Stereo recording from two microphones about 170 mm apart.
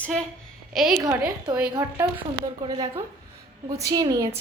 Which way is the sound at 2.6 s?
30° right (ahead or behind).